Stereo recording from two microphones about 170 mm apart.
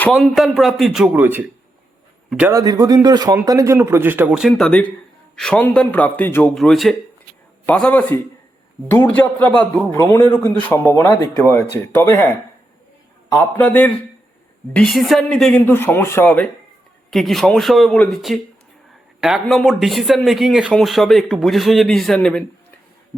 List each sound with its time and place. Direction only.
0.0 s speech: centre (ahead or behind)
2.5 s speech: 20° right (ahead or behind); by 22.4 s 5° left (ahead or behind)